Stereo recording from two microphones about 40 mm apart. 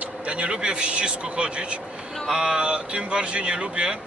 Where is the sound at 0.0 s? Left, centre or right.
Right.